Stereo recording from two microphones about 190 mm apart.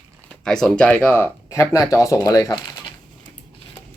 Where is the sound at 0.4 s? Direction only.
Centre (ahead or behind); by 2.9 s 20° left (ahead or behind).